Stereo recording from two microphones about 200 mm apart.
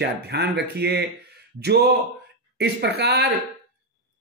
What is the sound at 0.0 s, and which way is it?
Speech, 55° right (ahead or behind).